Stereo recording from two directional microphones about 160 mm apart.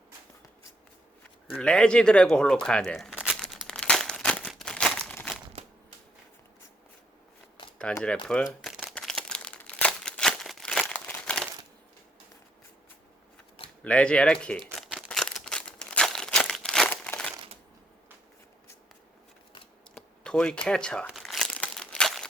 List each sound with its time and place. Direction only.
1.5 s tearing: 5° left (ahead or behind)
8.0 s speech: 5° left (ahead or behind)
8.6 s crumpling: 5° right (ahead or behind)
13.8 s speech: 5° left (ahead or behind)
14.8 s a sound: centre (ahead or behind)
19.9 s crumpling: 5° left (ahead or behind)